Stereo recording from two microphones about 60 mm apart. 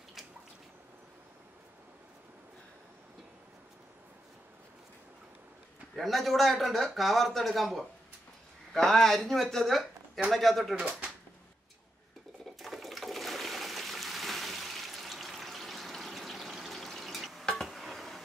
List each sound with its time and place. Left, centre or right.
5.9 s a man's voice: centre
10.8 s speech: centre
12.5 s water: centre
17.5 s dishes: centre